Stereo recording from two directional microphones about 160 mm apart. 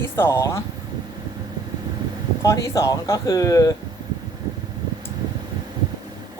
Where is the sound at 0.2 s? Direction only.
15° left (ahead or behind).